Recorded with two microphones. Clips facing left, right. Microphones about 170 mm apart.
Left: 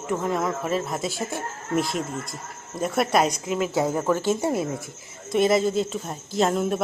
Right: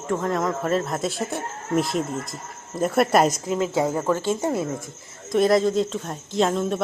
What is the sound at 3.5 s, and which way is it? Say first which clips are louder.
Speech: right 1 dB; 25° right (ahead or behind).